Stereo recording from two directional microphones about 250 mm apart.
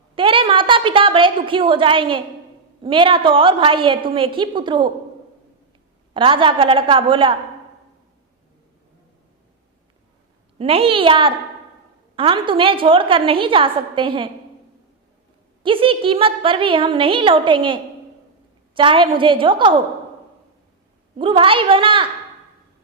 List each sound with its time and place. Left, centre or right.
0.2 s a woman's voice: right
6.1 s a woman's voice: centre
10.6 s a woman's voice: right
15.6 s a woman's voice: right
21.2 s a woman's voice: right